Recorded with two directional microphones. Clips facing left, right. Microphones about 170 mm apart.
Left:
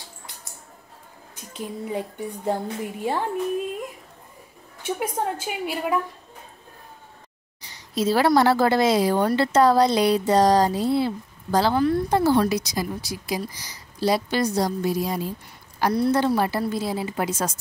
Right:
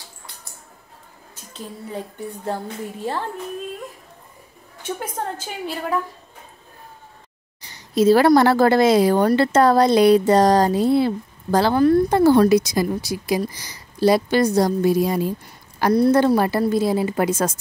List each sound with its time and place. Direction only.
1.3 s speech: 15° left (ahead or behind)
4.8 s speech: 10° left (ahead or behind)
7.6 s speech: 50° right (ahead or behind)
15.9 s a woman's voice: 45° right (ahead or behind)